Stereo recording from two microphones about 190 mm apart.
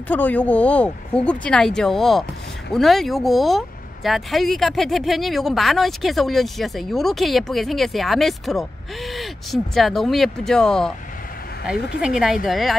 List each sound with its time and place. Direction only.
0.1 s speech: 10° left (ahead or behind)
12.0 s speech: 5° right (ahead or behind)